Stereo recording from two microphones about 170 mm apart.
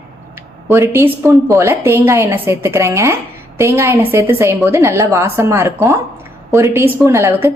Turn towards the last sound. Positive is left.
turn(degrees=-15)  # may be behind; listen again after turning